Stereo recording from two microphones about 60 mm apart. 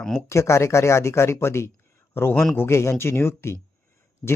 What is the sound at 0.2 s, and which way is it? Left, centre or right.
Speech, left.